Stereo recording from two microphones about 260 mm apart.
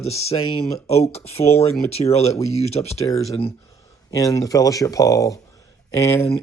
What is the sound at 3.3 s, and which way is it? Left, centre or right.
Speech, centre.